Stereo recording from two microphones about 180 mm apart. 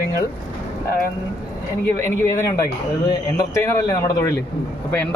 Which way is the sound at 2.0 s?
15° left (ahead or behind).